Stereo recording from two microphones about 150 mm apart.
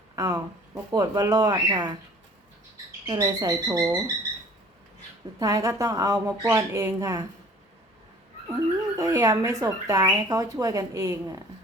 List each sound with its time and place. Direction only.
0.2 s speech: 25° right (ahead or behind)
3.1 s speech: 25° right (ahead or behind)
5.4 s speech: 25° right (ahead or behind)
8.4 s speech: 20° right (ahead or behind)